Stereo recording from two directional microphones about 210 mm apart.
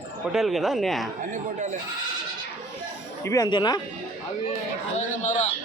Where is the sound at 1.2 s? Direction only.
35° right (ahead or behind).